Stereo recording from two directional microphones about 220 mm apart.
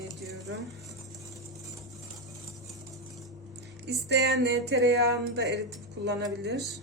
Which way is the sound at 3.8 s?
50° right (ahead or behind).